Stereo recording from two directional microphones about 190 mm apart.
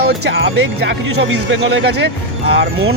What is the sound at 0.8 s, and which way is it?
Speech, 70° right (ahead or behind).